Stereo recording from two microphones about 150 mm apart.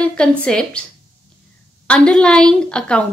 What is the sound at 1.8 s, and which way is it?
A woman's voice, 5° left (ahead or behind).